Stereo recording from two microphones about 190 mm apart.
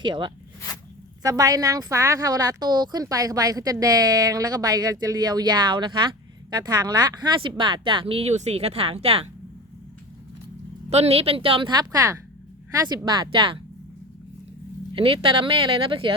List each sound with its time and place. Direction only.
0.0 s a woman's voice: 25° right (ahead or behind)
10.8 s a woman's voice: 35° right (ahead or behind)
14.9 s a woman's voice: 25° right (ahead or behind)